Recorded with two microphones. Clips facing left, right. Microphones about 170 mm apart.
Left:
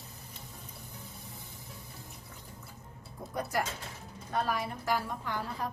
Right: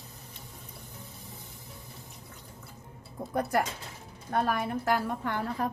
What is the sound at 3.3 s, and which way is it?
A woman's voice, 55° right (ahead or behind).